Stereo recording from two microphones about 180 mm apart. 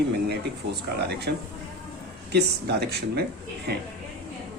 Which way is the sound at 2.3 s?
65° right (ahead or behind).